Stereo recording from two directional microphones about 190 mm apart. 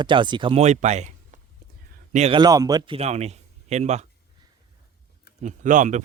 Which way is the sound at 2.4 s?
20° right (ahead or behind).